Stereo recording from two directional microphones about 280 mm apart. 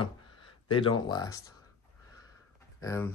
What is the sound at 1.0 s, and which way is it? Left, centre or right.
Speech, centre.